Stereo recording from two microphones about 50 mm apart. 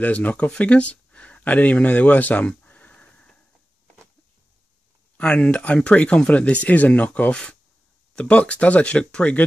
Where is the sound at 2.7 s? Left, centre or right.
Left.